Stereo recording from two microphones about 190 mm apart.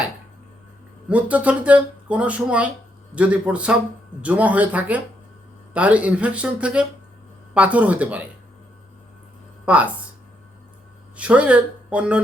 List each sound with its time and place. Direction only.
1.0 s speech: 5° right (ahead or behind)
9.6 s speech: 5° right (ahead or behind)
11.2 s speech: 5° right (ahead or behind)